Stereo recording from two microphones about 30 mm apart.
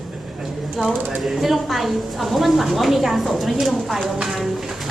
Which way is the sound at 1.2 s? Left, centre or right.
Centre.